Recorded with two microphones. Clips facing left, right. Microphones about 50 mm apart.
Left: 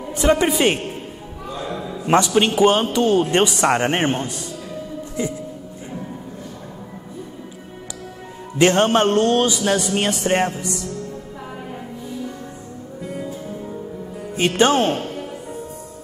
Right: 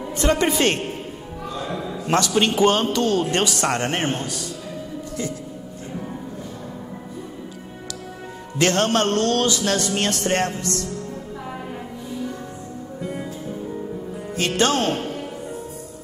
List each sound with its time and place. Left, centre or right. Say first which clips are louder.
0.1 s speech: left 3 dB; centre
1.7 s a sound: left 1 dB; centre
2.0 s a man's voice: left 3 dB; centre
8.5 s a man's voice: left 4 dB; centre
14.3 s speech: left 4 dB; centre